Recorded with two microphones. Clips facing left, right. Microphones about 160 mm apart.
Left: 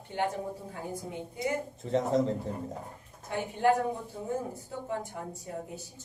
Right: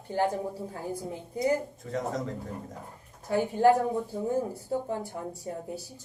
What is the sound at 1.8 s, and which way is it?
Speech, 25° left (ahead or behind).